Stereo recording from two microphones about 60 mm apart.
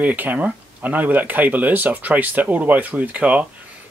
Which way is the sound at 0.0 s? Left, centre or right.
Right.